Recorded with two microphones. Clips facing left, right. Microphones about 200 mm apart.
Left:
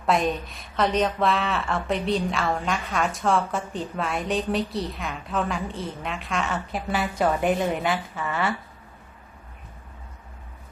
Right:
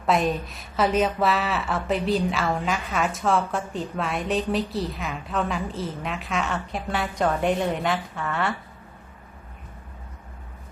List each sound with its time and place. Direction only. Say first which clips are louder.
0.0 s a woman's voice: right 1 dB; centre (ahead or behind)